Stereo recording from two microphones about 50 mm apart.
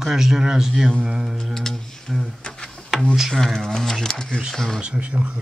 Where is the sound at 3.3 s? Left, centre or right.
Centre.